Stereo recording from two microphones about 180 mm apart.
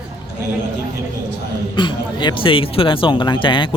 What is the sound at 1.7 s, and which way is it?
Speech, 25° left (ahead or behind).